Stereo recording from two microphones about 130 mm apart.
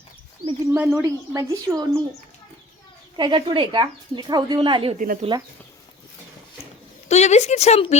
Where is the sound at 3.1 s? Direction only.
35° right (ahead or behind).